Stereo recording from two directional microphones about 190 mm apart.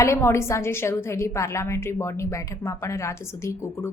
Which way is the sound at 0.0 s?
15° left (ahead or behind).